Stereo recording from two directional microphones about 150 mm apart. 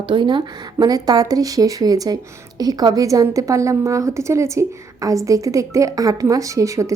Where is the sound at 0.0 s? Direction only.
35° right (ahead or behind).